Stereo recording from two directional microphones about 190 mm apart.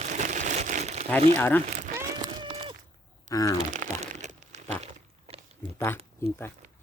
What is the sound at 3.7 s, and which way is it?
Crumpling, 40° right (ahead or behind).